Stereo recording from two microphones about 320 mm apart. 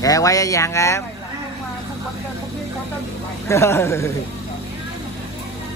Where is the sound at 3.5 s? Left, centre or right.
Centre.